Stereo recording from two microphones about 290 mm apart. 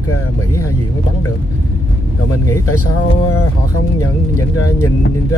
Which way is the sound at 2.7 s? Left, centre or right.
Left.